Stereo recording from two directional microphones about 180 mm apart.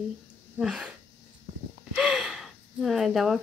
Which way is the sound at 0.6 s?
5° right (ahead or behind).